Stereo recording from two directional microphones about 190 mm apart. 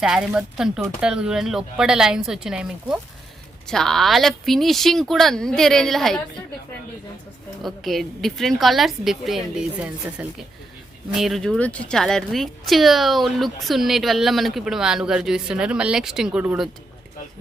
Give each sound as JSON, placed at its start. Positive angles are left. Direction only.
{"t": 0.0, "sound": "speech", "side_deg": -5}
{"t": 7.6, "sound": "speech", "side_deg": 0}